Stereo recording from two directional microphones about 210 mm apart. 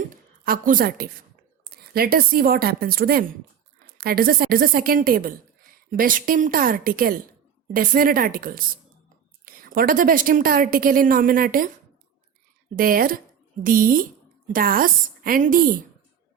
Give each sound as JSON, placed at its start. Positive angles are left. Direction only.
{"t": 0.4, "sound": "a woman's voice", "side_deg": -40}
{"t": 12.7, "sound": "a woman's voice", "side_deg": -45}